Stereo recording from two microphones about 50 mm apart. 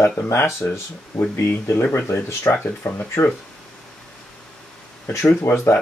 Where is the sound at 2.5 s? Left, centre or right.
Left.